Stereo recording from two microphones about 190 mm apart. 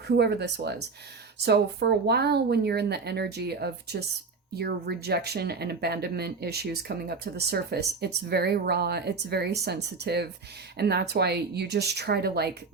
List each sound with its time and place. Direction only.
0.2 s speech: 65° right (ahead or behind)